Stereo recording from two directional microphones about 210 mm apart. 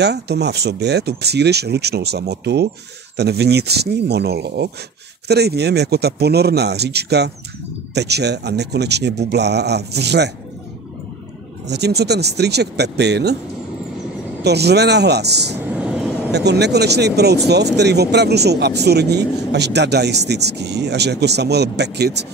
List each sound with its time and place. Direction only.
0.0 s speech: 50° right (ahead or behind)
11.6 s speech: 50° right (ahead or behind)
14.4 s speech: 50° right (ahead or behind)
15.7 s vehicle: 5° right (ahead or behind)
16.3 s speech: 55° right (ahead or behind)